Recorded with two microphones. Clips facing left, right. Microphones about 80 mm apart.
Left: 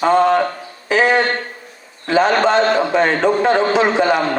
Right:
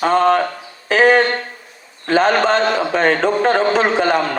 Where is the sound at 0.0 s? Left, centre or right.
Right.